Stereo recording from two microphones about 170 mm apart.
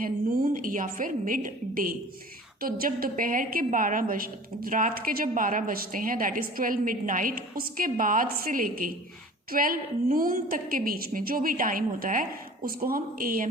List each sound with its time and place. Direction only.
0.0 s a woman's voice: 55° right (ahead or behind)